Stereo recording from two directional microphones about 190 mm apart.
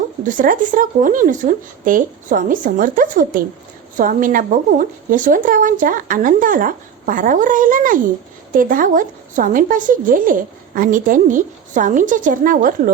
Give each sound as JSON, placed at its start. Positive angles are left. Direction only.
{"t": 0.3, "sound": "a woman's voice", "side_deg": -45}